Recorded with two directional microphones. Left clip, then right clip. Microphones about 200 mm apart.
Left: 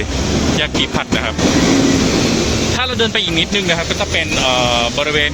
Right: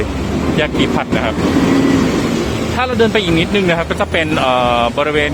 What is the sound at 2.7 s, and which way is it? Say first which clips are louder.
Speech: right 5 dB; 10° right (ahead or behind).